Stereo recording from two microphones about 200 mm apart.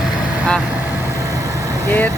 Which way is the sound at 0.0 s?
5° left (ahead or behind).